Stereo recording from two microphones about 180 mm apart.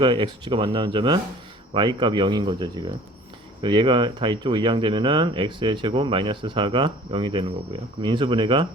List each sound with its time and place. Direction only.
0.0 s speech: 25° right (ahead or behind)